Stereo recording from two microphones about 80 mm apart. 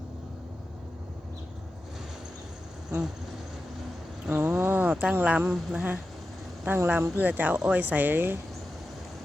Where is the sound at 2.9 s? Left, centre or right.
Centre.